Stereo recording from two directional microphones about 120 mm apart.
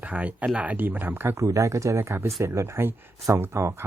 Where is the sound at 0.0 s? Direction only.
10° right (ahead or behind).